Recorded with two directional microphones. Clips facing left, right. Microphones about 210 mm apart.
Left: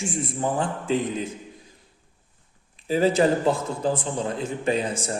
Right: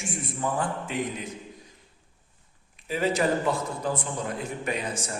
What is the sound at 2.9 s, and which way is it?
A man's voice, 30° left (ahead or behind).